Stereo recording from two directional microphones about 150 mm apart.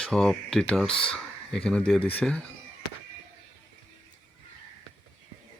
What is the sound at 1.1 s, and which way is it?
Speech, 5° left (ahead or behind).